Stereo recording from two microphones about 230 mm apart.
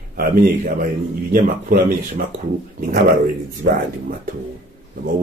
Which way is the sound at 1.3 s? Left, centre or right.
Right.